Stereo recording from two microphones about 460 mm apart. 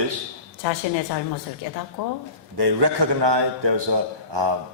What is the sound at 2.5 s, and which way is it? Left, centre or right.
A man's voice, right.